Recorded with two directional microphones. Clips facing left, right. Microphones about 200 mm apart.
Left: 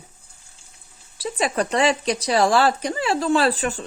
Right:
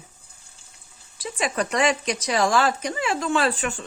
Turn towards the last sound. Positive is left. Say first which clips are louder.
# left 3 dB
turn(degrees=35)  # may be behind; listen again after turning